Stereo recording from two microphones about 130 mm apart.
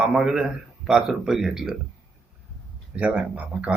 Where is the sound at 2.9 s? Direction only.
10° right (ahead or behind).